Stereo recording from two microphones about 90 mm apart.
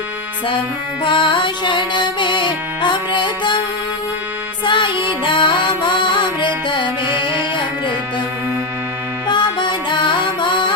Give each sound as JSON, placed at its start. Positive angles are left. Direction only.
{"t": 1.0, "sound": "music", "side_deg": 65}
{"t": 4.6, "sound": "music", "side_deg": 65}
{"t": 9.2, "sound": "music", "side_deg": 60}